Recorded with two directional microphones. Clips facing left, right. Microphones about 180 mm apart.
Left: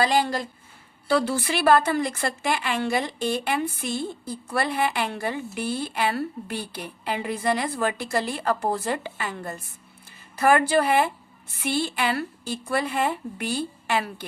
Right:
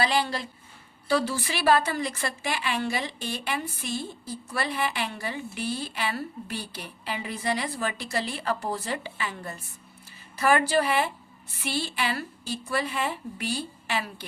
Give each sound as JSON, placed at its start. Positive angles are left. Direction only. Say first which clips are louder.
{"t": 0.0, "sound": "a woman's voice", "louder": "left 4 dB", "side_deg": 45}
{"t": 1.0, "sound": "a woman's voice", "louder": "left 3 dB", "side_deg": 55}